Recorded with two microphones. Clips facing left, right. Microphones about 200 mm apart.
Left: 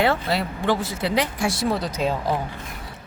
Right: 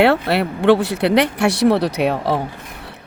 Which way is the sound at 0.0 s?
65° right (ahead or behind).